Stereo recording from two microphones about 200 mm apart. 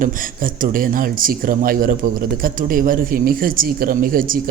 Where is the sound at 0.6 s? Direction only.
45° right (ahead or behind).